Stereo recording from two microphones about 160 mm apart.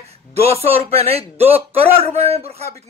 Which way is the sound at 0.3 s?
40° right (ahead or behind).